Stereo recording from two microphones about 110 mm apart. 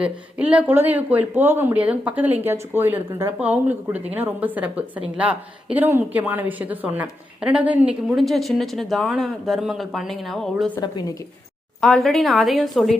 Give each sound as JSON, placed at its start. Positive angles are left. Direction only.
{"t": 0.0, "sound": "a woman's voice", "side_deg": -10}
{"t": 10.8, "sound": "a woman's voice", "side_deg": 35}
{"t": 11.8, "sound": "speech", "side_deg": 5}